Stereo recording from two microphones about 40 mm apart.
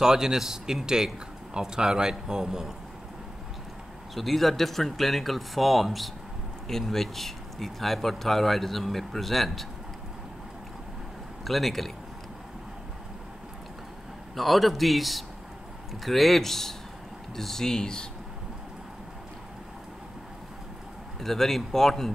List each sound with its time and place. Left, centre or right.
0.0 s speech: centre
4.1 s speech: centre
11.4 s speech: centre
14.3 s speech: centre
21.2 s speech: centre